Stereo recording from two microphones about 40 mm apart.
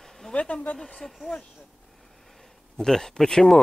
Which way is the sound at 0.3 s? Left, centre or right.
Left.